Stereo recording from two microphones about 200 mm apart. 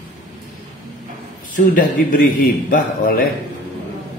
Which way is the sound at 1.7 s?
45° left (ahead or behind).